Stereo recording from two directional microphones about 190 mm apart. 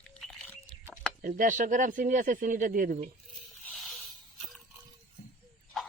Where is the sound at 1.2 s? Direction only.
40° right (ahead or behind).